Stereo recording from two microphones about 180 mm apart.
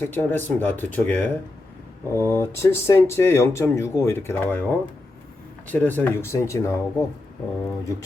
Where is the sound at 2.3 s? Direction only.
15° left (ahead or behind).